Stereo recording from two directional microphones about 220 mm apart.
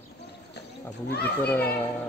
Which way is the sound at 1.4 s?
10° left (ahead or behind).